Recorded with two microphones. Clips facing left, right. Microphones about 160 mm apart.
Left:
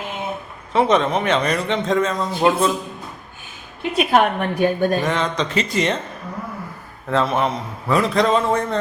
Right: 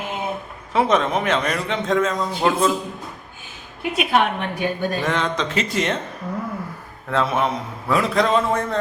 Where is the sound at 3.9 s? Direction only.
45° left (ahead or behind).